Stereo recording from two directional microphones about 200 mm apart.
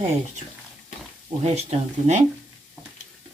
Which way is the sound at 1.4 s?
35° right (ahead or behind).